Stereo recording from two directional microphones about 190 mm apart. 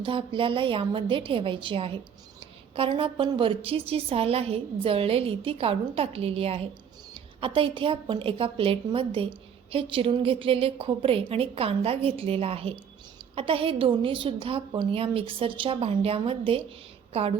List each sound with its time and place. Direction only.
0.0 s a woman's voice: 25° right (ahead or behind)